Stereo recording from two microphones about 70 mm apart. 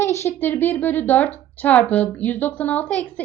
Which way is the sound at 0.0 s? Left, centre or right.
Left.